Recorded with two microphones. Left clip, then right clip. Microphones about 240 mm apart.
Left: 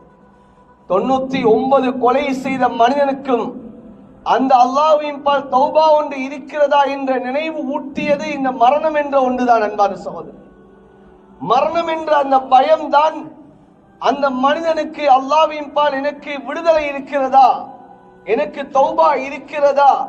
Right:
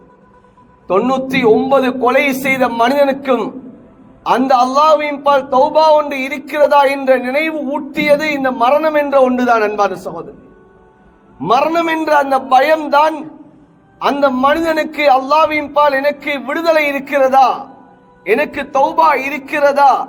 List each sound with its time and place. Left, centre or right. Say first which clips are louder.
0.9 s a man's voice: right 2 dB; right
11.4 s a man's voice: right 2 dB; right